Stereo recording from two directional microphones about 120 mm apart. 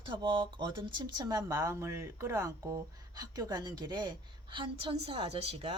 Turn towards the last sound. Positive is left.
turn(degrees=-55)  # may be behind; listen again after turning